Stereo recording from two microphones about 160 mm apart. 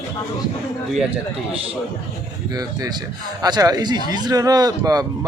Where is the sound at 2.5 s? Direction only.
25° right (ahead or behind).